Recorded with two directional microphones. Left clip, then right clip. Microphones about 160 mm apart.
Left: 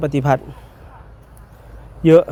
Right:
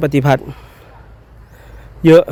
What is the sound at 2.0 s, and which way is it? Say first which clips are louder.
Speech: right 3 dB; 40° right (ahead or behind).